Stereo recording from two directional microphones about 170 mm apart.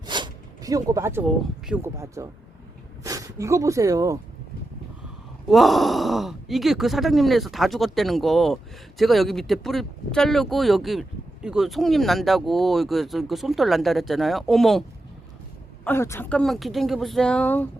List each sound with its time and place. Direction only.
0.0 s zipper: 25° right (ahead or behind)
1.6 s speech: 10° right (ahead or behind)
5.5 s speech: centre (ahead or behind)
15.8 s speech: 15° left (ahead or behind)